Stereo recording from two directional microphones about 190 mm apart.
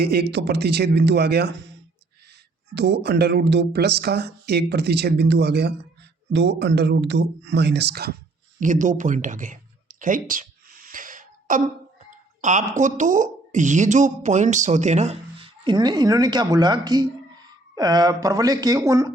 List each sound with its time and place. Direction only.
0.0 s speech: 55° right (ahead or behind)
2.7 s speech: 65° right (ahead or behind)
8.6 s a sound: 40° right (ahead or behind)
12.4 s speech: 40° right (ahead or behind); by 19.1 s 15° right (ahead or behind)